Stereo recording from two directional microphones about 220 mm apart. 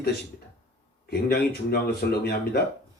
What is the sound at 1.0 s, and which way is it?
Speech, 45° left (ahead or behind).